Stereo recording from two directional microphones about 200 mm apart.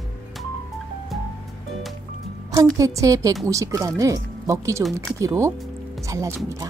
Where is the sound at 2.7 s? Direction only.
15° right (ahead or behind).